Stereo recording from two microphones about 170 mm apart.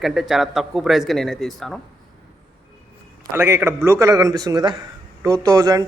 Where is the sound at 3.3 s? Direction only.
15° right (ahead or behind).